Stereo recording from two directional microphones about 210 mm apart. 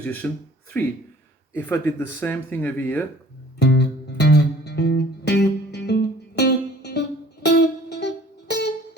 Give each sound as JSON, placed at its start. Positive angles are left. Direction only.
{"t": 0.0, "sound": "speech", "side_deg": 10}
{"t": 3.6, "sound": "music", "side_deg": 55}